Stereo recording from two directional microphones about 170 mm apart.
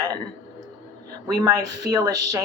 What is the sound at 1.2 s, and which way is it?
A woman's voice, 20° right (ahead or behind).